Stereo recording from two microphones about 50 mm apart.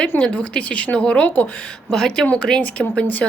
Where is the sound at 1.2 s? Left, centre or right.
Left.